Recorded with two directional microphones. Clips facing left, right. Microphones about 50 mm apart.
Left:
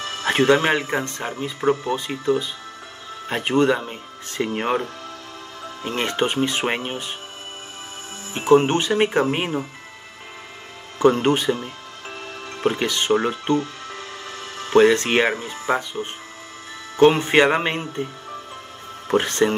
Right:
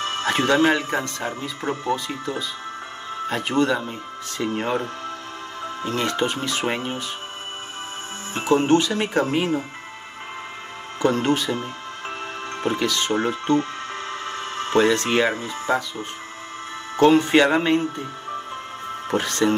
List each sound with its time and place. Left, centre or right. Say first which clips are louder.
0.2 s speech: left 2 dB; left
5.9 s speech: left 1 dB; left
8.4 s speech: left 2 dB; left
11.0 s speech: left 3 dB; left
12.6 s speech: left 2 dB; left
13.6 s music: right 2 dB; right
14.8 s speech: left 3 dB; left
19.1 s speech: left 3 dB; left